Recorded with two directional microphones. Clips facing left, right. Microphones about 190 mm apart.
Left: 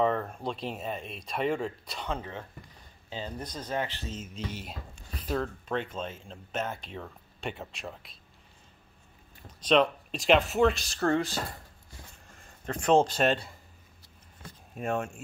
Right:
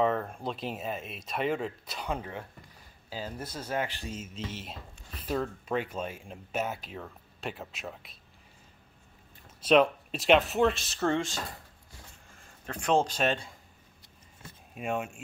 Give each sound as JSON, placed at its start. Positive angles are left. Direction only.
{"t": 0.0, "sound": "speech", "side_deg": 0}
{"t": 9.6, "sound": "speech", "side_deg": -5}
{"t": 12.8, "sound": "speech", "side_deg": 10}
{"t": 14.8, "sound": "speech", "side_deg": -10}